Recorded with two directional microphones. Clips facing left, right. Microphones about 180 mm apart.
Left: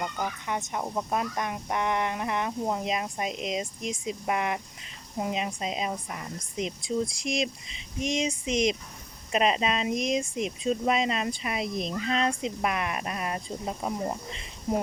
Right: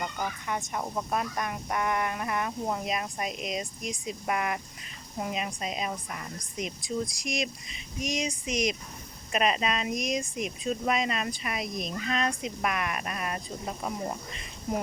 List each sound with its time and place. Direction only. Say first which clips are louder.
0.0 s speech: left 1 dB; 15° left (ahead or behind)